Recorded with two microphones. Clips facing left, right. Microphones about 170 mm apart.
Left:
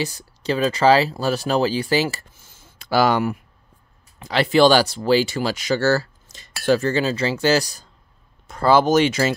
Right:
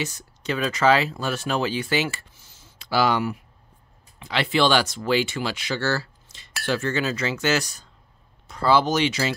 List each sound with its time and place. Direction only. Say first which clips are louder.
0.0 s speech: left 4 dB; 35° left (ahead or behind)
8.5 s speech: left 4 dB; 45° left (ahead or behind)